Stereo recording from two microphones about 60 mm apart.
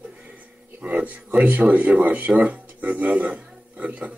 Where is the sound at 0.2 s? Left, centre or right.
Right.